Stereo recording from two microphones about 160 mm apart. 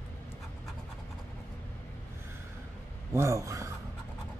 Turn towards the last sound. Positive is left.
turn(degrees=-20)  # may be behind; listen again after turning